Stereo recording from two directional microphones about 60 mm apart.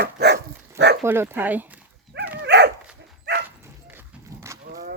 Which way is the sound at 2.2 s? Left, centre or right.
Right.